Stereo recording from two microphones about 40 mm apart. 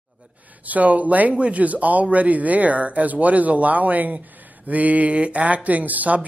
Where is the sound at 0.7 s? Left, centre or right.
Right.